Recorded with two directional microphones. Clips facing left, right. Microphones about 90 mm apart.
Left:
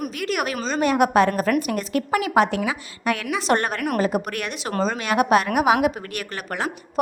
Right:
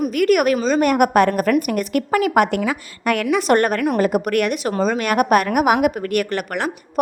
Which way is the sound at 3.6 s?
25° left (ahead or behind).